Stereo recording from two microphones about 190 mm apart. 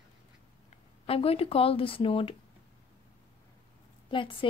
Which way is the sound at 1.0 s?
30° left (ahead or behind).